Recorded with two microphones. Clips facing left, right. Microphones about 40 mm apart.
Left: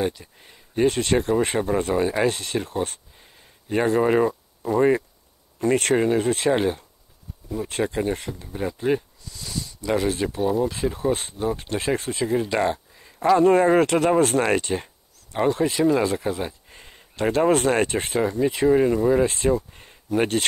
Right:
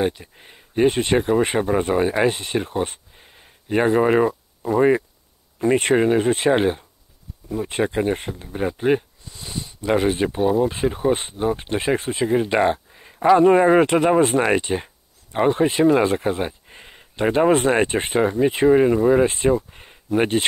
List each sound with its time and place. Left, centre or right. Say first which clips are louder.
0.0 s speech: right 3 dB; right
18.7 s speech: right 3 dB; centre